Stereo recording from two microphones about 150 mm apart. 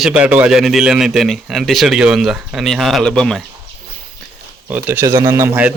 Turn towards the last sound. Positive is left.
turn(degrees=-10)  # may be behind; listen again after turning